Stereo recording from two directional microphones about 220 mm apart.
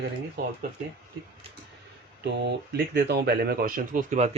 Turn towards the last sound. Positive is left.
turn(degrees=-35)  # may be behind; listen again after turning